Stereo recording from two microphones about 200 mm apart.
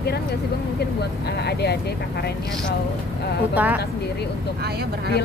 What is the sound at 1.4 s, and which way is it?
Speech, 55° left (ahead or behind).